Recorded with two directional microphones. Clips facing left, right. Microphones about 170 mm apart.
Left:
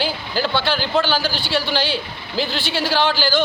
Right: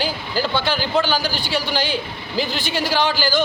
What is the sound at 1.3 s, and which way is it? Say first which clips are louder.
Speech: left 1 dB; 45° right (ahead or behind).